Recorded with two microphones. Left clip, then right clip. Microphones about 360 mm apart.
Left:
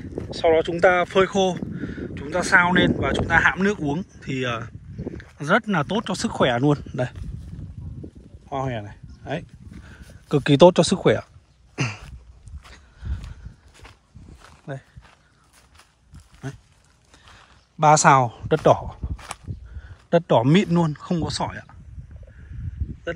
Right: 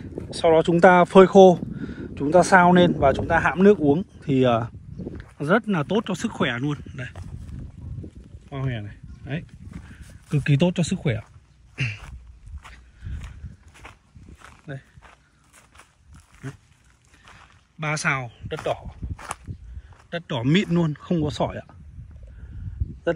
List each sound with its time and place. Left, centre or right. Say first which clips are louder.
0.1 s speech: right 1 dB; centre
8.5 s speech: left 6 dB; centre
14.4 s walk: left 3 dB; centre
17.2 s a sound: right 1 dB; centre
19.1 s a sound: right 5 dB; centre
20.1 s speech: left 8 dB; centre